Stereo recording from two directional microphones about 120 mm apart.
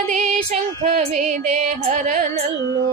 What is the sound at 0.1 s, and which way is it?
Music, 90° right.